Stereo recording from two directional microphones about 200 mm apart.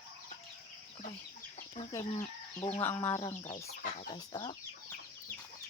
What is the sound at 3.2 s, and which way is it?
Speech, 25° left (ahead or behind).